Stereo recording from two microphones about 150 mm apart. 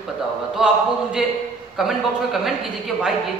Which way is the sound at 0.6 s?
5° right (ahead or behind).